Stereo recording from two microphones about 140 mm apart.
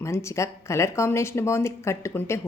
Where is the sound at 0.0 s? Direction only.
20° left (ahead or behind).